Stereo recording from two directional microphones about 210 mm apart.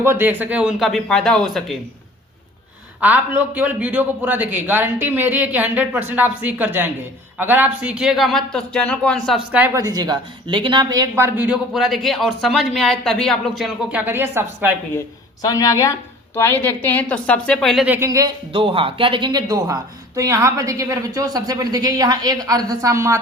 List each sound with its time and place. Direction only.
0.0 s speech: 10° right (ahead or behind)
3.0 s speech: 10° right (ahead or behind)
14.9 s speech: 15° left (ahead or behind)
17.8 s speech: 10° right (ahead or behind)